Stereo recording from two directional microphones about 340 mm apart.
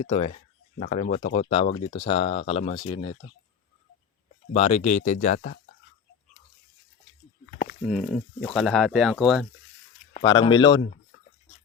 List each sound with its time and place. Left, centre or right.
0.0 s speech: centre
4.5 s speech: centre
7.9 s speech: centre
10.2 s speech: centre